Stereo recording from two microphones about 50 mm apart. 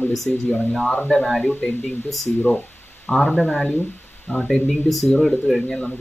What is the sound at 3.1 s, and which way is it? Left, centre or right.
Speech, left.